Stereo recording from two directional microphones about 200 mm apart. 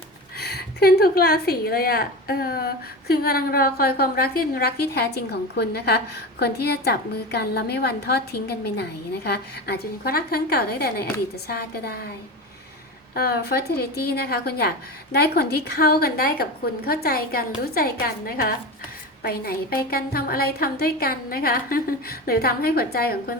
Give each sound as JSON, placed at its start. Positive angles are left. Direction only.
{"t": 0.3, "sound": "a woman's voice", "side_deg": 50}
{"t": 13.1, "sound": "a woman's voice", "side_deg": 50}